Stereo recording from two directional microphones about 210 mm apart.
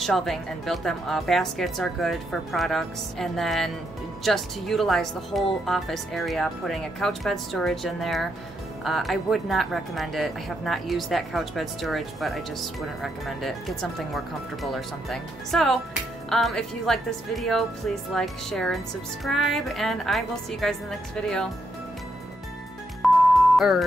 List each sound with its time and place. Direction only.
0.0 s speech: centre (ahead or behind)
23.0 s music: centre (ahead or behind)